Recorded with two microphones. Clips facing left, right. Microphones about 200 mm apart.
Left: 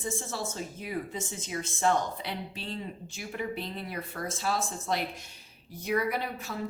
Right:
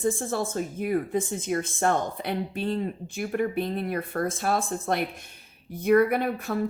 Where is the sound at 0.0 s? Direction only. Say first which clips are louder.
Right 8 dB; 55° right (ahead or behind).